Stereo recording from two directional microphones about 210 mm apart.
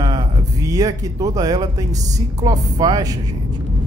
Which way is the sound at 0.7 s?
15° right (ahead or behind).